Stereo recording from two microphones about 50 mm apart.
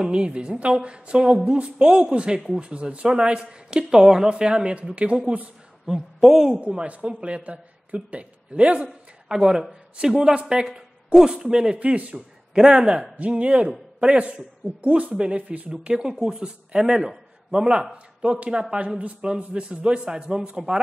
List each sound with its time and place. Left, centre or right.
0.0 s a woman's voice: right
5.9 s a woman's voice: centre
6.5 s a woman's voice: right
9.3 s a woman's voice: centre; by 15.7 s right
15.7 s a woman's voice: centre